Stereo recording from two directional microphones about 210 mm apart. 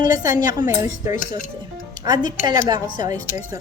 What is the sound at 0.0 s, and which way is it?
Speech, 15° right (ahead or behind).